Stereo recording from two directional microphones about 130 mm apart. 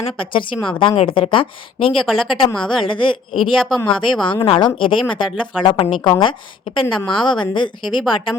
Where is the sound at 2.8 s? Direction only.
40° left (ahead or behind).